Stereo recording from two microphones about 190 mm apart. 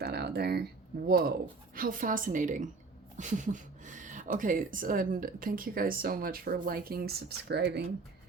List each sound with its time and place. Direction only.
0.0 s speech: 55° right (ahead or behind)